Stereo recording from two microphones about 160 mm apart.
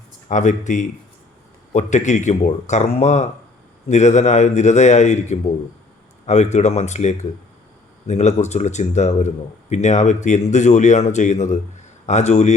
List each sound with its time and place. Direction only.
0.3 s speech: 50° left (ahead or behind)